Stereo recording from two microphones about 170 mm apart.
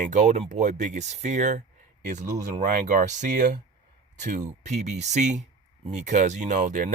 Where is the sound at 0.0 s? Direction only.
45° right (ahead or behind).